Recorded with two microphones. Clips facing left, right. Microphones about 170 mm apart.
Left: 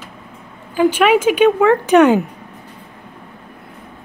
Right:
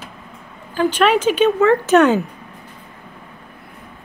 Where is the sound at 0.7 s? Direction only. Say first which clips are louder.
Left 3 dB; 10° left (ahead or behind).